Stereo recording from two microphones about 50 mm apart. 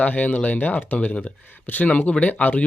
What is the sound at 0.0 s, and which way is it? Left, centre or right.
Speech, left.